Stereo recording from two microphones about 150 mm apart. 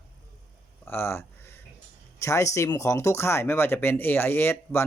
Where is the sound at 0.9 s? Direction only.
15° left (ahead or behind).